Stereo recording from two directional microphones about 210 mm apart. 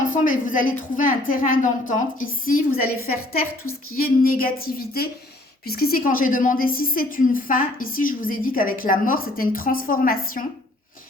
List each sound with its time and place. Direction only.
0.0 s a woman's voice: 40° left (ahead or behind)
4.2 s a woman's voice: 45° left (ahead or behind)